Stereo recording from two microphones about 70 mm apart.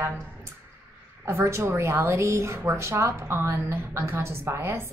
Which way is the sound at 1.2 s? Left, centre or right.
Right.